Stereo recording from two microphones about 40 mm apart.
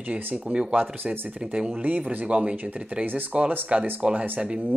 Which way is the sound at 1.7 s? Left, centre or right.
Right.